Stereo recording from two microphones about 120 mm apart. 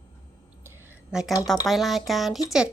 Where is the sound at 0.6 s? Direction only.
20° right (ahead or behind).